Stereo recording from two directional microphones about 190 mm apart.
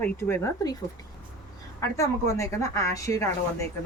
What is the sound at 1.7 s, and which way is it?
A woman's voice, 15° left (ahead or behind).